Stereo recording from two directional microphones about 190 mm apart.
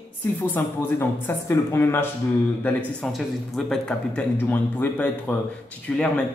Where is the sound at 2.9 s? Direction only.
Centre (ahead or behind).